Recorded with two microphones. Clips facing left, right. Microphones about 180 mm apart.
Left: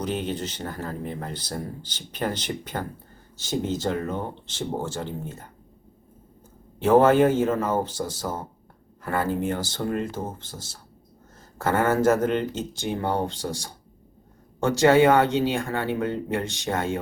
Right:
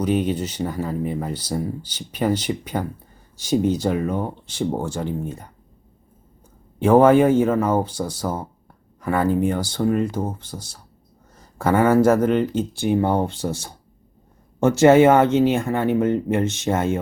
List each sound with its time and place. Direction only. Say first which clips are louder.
0.0 s speech: right 7 dB; 10° right (ahead or behind)
6.7 s speech: right 3 dB; 10° right (ahead or behind)
14.8 s speech: right 4 dB; 20° right (ahead or behind)
16.4 s speech: right 8 dB; 15° left (ahead or behind)